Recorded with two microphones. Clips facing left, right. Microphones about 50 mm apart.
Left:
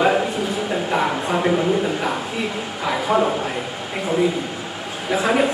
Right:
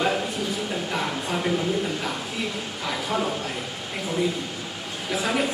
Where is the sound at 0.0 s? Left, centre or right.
Left.